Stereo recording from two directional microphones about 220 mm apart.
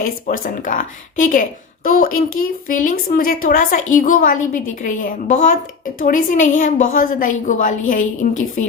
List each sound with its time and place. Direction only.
0.3 s speech: 35° left (ahead or behind)